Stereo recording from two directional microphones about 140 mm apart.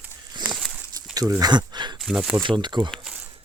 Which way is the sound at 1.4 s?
30° right (ahead or behind).